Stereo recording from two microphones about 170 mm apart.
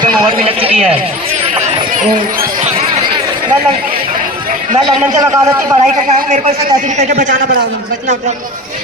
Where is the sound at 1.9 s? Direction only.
50° right (ahead or behind).